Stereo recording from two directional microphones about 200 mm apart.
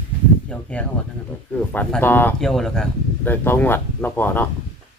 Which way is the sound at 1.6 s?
10° left (ahead or behind).